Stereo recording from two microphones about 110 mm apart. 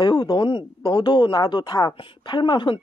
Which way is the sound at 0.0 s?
40° left (ahead or behind).